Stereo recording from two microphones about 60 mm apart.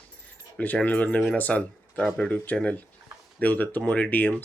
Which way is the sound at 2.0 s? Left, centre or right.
Centre.